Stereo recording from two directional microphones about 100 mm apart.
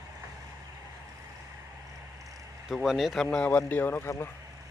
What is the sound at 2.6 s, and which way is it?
Speech, 5° right (ahead or behind).